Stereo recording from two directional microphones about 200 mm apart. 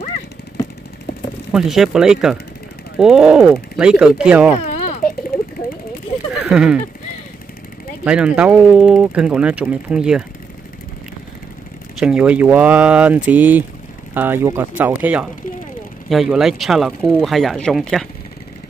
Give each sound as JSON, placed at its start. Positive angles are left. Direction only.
{"t": 1.5, "sound": "speech", "side_deg": 0}
{"t": 4.6, "sound": "a sound", "side_deg": 30}
{"t": 6.4, "sound": "speech", "side_deg": -5}
{"t": 8.0, "sound": "speech", "side_deg": -5}
{"t": 12.0, "sound": "speech", "side_deg": -5}